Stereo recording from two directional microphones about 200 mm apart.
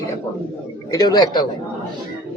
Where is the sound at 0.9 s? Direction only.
20° left (ahead or behind).